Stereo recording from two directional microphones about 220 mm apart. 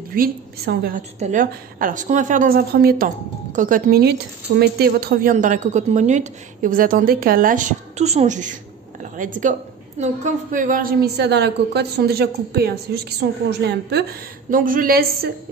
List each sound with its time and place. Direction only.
0.1 s a woman's voice: 40° right (ahead or behind)
14.5 s a woman's voice: 40° right (ahead or behind)